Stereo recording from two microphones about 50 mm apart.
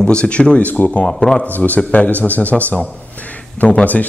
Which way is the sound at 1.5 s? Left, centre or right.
Left.